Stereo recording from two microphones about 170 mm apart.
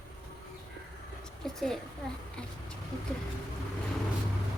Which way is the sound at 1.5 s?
Centre (ahead or behind).